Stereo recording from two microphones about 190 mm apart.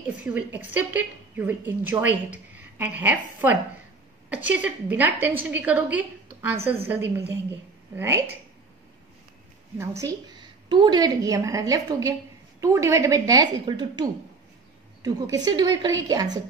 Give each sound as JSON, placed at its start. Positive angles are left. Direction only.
{"t": 0.2, "sound": "a woman's voice", "side_deg": -10}
{"t": 9.8, "sound": "a woman's voice", "side_deg": -15}